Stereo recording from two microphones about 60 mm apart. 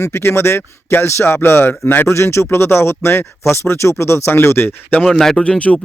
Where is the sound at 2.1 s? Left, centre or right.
Left.